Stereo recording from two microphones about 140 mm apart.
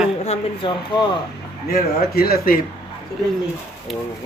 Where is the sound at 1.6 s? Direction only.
90° left.